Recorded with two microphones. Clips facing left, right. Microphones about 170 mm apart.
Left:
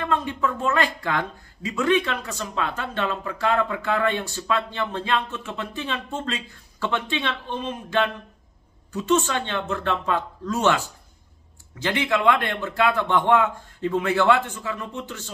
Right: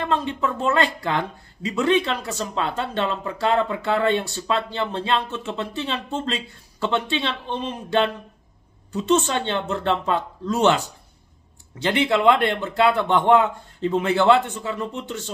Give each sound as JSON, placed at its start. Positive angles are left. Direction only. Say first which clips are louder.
{"t": 0.0, "sound": "speech", "louder": "right 1 dB", "side_deg": -30}
{"t": 11.8, "sound": "speech", "louder": "right 3 dB", "side_deg": -30}